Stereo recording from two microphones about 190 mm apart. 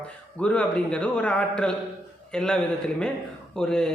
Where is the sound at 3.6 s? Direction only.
5° left (ahead or behind).